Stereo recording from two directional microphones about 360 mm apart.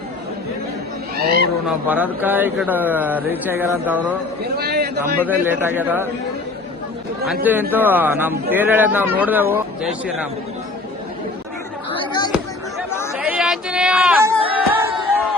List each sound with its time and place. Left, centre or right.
1.1 s a sound: right
1.6 s speech: centre
4.5 s a sound: right
5.2 s speech: centre
7.4 s speech: centre
13.1 s chatter: centre
14.5 s music: centre